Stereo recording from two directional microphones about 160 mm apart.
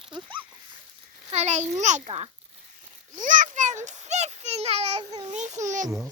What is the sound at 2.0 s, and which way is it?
Speech, 35° right (ahead or behind).